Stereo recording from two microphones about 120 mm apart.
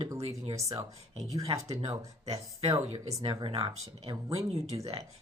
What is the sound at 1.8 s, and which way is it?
Speech, 55° right (ahead or behind).